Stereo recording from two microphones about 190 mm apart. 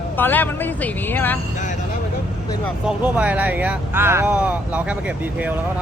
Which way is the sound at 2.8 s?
5° right (ahead or behind).